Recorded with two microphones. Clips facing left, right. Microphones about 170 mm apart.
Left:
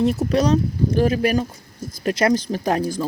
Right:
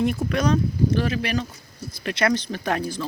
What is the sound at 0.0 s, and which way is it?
Speech, 35° left (ahead or behind).